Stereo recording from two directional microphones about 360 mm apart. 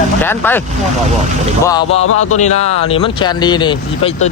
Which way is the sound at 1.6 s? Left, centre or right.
Centre.